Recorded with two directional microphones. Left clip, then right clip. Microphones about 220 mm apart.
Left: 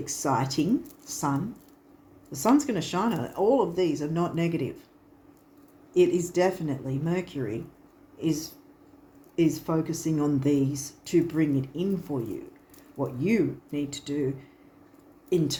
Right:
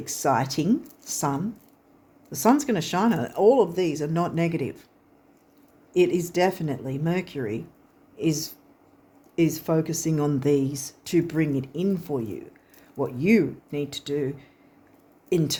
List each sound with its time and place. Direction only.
0.0 s speech: 45° right (ahead or behind)
5.9 s speech: 45° right (ahead or behind)
15.3 s speech: 45° right (ahead or behind)